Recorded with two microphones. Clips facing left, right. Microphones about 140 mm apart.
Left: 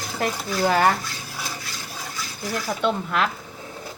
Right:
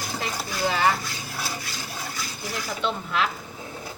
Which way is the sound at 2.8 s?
50° left (ahead or behind).